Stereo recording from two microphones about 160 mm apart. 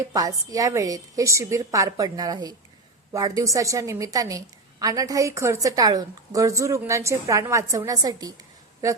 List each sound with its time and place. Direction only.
0.1 s a woman's voice: 20° right (ahead or behind)